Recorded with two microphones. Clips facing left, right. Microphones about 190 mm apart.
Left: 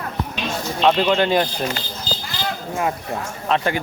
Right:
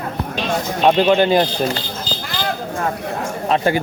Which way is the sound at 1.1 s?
30° right (ahead or behind).